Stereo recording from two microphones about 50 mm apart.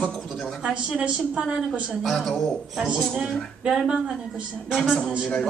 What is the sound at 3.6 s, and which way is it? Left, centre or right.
A man's voice, centre.